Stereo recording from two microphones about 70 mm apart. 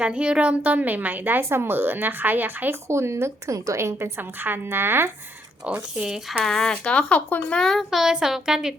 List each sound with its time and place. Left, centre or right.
0.0 s a woman's voice: centre
2.9 s a woman's voice: right
4.2 s a woman's voice: right
6.0 s speech: centre
6.4 s speech: centre
7.6 s a child's voice: centre
7.9 s speech: centre